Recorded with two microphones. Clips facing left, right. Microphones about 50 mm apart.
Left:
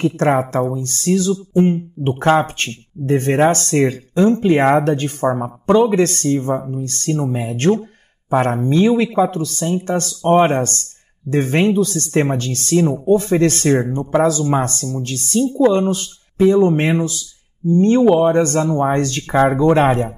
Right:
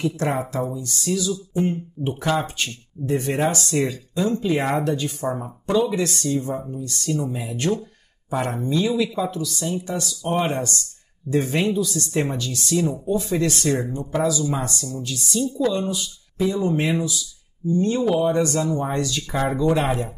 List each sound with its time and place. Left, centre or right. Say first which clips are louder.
0.0 s speech: left 8 dB; left